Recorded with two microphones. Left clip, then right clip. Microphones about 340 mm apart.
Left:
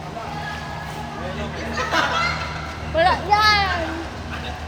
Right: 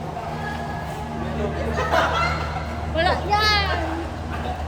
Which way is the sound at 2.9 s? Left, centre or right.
Centre.